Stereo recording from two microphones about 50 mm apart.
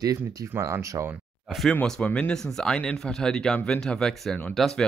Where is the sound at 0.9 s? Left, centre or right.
Right.